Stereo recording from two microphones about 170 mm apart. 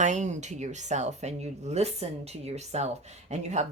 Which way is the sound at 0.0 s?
45° right (ahead or behind).